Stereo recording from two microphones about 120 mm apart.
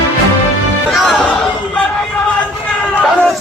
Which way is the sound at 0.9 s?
5° left (ahead or behind).